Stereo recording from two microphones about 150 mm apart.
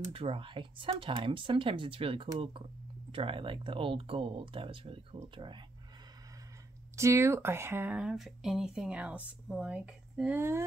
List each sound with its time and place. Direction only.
0.1 s speech: 40° right (ahead or behind)
7.0 s speech: 20° right (ahead or behind)
10.3 s speech: 15° right (ahead or behind)